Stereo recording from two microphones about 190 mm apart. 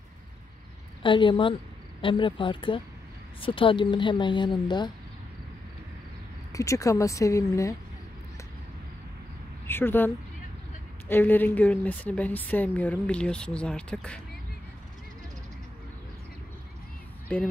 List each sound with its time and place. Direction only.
1.0 s speech: 25° left (ahead or behind)
6.5 s a woman's voice: 15° left (ahead or behind)
9.7 s a woman's voice: 10° left (ahead or behind)
17.3 s a woman's voice: 5° left (ahead or behind)